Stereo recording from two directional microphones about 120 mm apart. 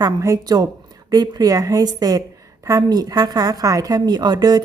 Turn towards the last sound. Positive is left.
turn(degrees=-35)  # may be behind; listen again after turning